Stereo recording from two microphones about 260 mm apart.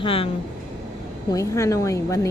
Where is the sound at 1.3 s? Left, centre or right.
Centre.